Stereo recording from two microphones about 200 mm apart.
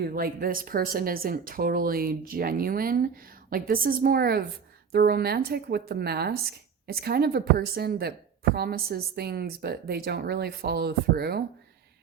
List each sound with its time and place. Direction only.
0.0 s a woman's voice: 45° right (ahead or behind)